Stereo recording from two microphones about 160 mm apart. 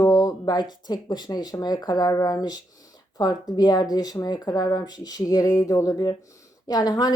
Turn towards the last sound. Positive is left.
turn(degrees=25)  # may be behind; listen again after turning